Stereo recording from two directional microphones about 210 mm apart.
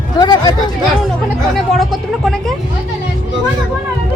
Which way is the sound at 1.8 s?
Centre (ahead or behind).